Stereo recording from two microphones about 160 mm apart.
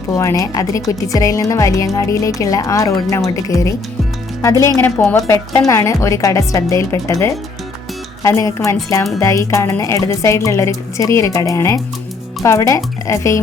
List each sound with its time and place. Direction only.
0.1 s speech: 20° left (ahead or behind)